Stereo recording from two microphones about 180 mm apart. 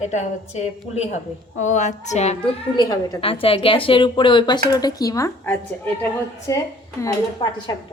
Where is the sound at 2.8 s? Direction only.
25° left (ahead or behind).